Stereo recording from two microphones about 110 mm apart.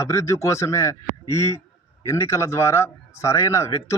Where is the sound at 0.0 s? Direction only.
25° left (ahead or behind).